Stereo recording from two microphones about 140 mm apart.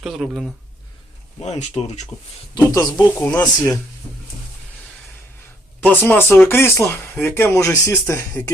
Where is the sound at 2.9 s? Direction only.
10° left (ahead or behind).